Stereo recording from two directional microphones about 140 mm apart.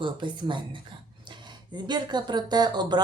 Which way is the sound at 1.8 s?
30° right (ahead or behind).